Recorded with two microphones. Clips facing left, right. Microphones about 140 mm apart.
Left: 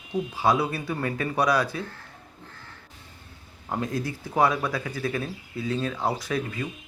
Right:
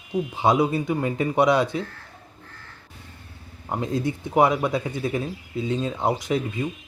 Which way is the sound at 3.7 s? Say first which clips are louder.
Right 3 dB; 20° right (ahead or behind).